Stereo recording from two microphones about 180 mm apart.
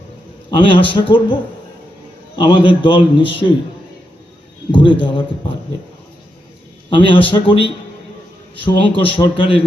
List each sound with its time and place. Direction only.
0.5 s a man's voice: 30° left (ahead or behind)
4.7 s a man's voice: 25° left (ahead or behind)
6.9 s a man's voice: 30° left (ahead or behind)